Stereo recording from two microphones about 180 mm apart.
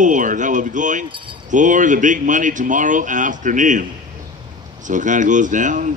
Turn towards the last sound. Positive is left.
turn(degrees=-45)  # may be behind; listen again after turning